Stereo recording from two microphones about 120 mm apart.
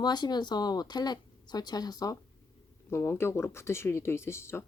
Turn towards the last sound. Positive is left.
turn(degrees=20)  # may be behind; listen again after turning